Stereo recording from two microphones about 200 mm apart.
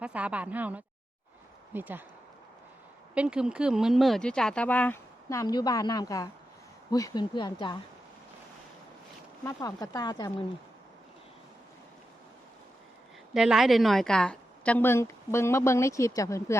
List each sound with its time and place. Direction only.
0.0 s speech: 5° right (ahead or behind)
3.2 s speech: 5° right (ahead or behind); by 7.8 s 25° left (ahead or behind)
9.4 s a woman's voice: 15° left (ahead or behind)
13.3 s a woman's voice: centre (ahead or behind); by 16.6 s 15° left (ahead or behind)